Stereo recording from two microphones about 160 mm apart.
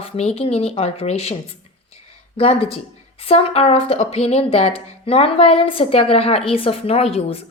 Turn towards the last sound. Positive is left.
turn(degrees=40)  # may be behind; listen again after turning